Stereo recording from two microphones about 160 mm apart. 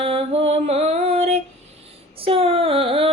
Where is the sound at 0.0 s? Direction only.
35° right (ahead or behind).